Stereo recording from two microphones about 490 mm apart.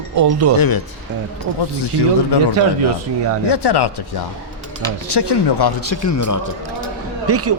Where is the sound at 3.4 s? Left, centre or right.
Left.